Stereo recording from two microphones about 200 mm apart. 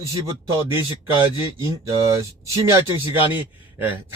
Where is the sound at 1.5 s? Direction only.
15° right (ahead or behind).